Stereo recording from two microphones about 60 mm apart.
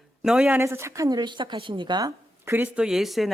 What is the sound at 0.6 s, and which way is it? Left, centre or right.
Speech, right.